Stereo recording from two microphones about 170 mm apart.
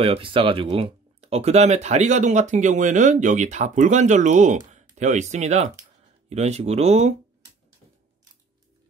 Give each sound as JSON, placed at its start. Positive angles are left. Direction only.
{"t": 0.0, "sound": "speech", "side_deg": -30}